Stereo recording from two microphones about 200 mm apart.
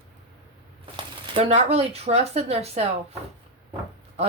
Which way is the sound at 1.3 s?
30° right (ahead or behind).